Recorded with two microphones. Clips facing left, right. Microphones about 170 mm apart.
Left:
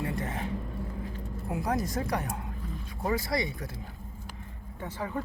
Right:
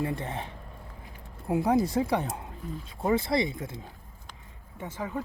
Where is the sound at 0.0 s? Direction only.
25° right (ahead or behind).